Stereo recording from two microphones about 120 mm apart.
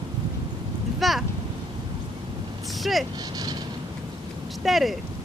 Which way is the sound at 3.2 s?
35° right (ahead or behind).